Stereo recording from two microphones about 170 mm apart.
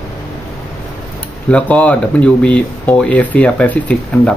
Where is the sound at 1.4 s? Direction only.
10° left (ahead or behind).